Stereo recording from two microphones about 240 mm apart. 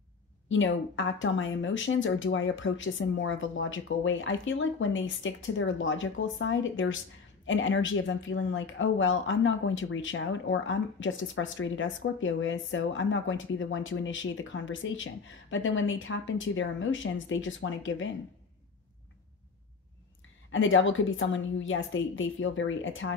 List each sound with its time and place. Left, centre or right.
0.5 s speech: left
20.5 s speech: left